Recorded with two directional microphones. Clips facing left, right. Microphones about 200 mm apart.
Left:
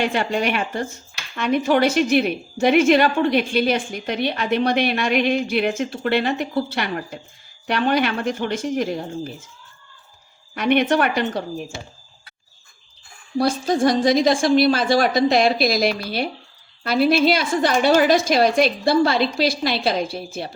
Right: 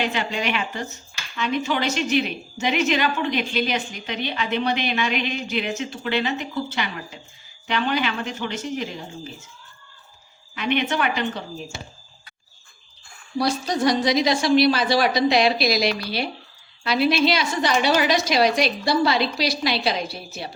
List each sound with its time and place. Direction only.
0.1 s a woman's voice: 50° left (ahead or behind)
10.5 s a woman's voice: 50° left (ahead or behind)
13.4 s a woman's voice: 50° left (ahead or behind)